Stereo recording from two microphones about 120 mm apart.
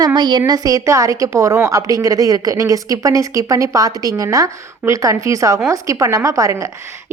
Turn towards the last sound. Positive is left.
turn(degrees=-30)  # may be behind; listen again after turning